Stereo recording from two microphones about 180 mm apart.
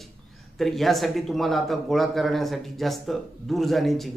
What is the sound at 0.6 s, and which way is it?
Speech, centre (ahead or behind).